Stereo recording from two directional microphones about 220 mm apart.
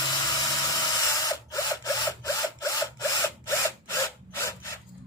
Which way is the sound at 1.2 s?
15° left (ahead or behind).